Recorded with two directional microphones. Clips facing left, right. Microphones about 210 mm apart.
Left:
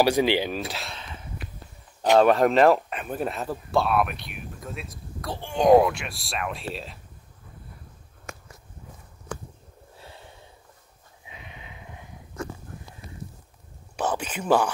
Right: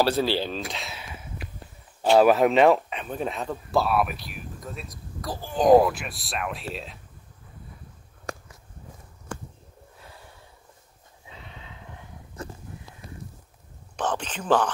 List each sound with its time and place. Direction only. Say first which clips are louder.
0.0 s speech: left 2 dB; 15° left (ahead or behind)
0.6 s speech: left 1 dB; centre (ahead or behind)
0.9 s a sound: even; 10° right (ahead or behind)
2.1 s speech: even; 5° right (ahead or behind)
9.9 s snort: left 3 dB; 30° left (ahead or behind)
11.2 s horse: even; 15° left (ahead or behind)
13.9 s speech: left 1 dB; 10° left (ahead or behind)